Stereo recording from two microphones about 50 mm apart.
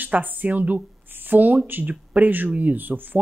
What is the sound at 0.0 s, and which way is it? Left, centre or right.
A woman's voice, right.